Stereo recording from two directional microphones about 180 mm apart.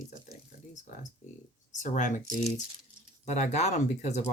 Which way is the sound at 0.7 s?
40° left (ahead or behind).